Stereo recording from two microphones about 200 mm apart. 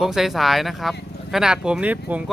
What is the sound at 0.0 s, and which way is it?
Speech, centre (ahead or behind).